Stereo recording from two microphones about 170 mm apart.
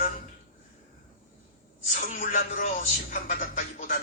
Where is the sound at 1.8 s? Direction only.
45° left (ahead or behind).